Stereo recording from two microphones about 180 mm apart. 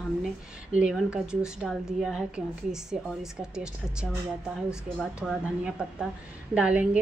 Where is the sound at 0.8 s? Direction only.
5° right (ahead or behind).